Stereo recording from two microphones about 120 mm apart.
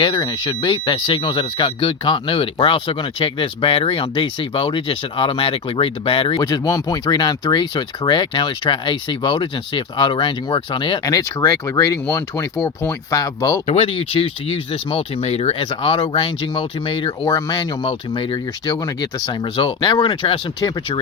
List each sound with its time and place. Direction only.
0.3 s speech: 40° left (ahead or behind)
6.4 s speech: 30° left (ahead or behind)
11.0 s speech: 25° left (ahead or behind)
13.7 s speech: 50° left (ahead or behind)